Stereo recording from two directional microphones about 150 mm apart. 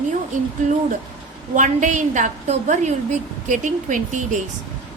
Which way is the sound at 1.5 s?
55° right (ahead or behind).